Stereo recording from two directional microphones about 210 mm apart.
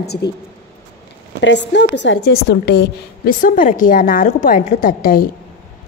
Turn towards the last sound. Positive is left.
turn(degrees=40)  # may be behind; listen again after turning